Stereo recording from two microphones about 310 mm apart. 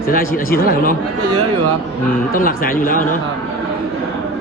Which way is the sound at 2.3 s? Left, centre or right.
Left.